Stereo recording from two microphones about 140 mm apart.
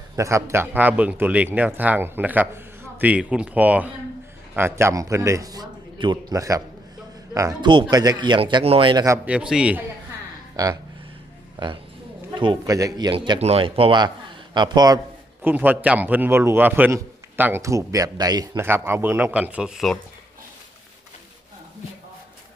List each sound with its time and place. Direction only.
0.2 s a man's voice: 20° right (ahead or behind)
9.2 s a man's voice: 10° right (ahead or behind)
11.6 s a man's voice: 35° right (ahead or behind)
13.4 s speech: 45° right (ahead or behind); by 15.0 s 30° right (ahead or behind)
15.4 s a man's voice: 15° right (ahead or behind)
18.6 s a man's voice: 15° right (ahead or behind); by 20.0 s centre (ahead or behind)